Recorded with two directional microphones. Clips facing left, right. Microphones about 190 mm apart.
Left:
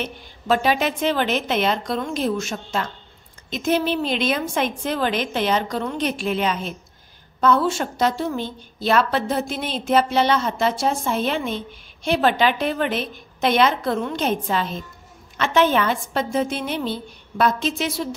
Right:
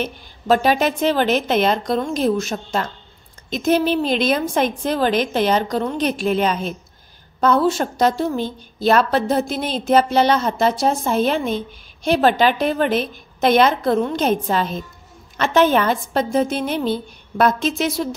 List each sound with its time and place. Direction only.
0.0 s a woman's voice: 40° right (ahead or behind)